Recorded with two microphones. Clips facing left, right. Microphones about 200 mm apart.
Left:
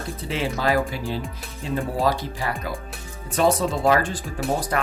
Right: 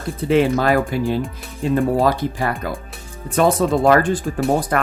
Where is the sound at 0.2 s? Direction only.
55° right (ahead or behind).